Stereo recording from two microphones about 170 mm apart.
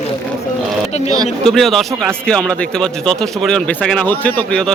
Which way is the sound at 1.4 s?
Centre (ahead or behind).